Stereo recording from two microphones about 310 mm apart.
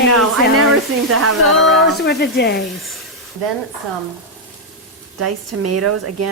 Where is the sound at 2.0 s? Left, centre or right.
Left.